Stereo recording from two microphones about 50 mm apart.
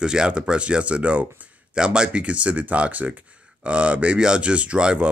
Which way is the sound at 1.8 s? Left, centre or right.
Centre.